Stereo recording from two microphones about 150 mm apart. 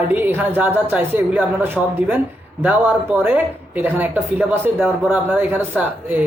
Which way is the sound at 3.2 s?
10° right (ahead or behind).